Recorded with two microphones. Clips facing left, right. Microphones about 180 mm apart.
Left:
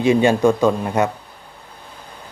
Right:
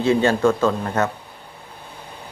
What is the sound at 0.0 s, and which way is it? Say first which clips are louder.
Speech: left 3 dB; 15° left (ahead or behind).